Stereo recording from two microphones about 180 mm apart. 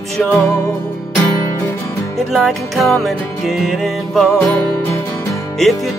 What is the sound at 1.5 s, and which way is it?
Music, 15° left (ahead or behind).